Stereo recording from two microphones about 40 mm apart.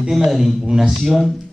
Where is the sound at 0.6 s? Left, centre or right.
Centre.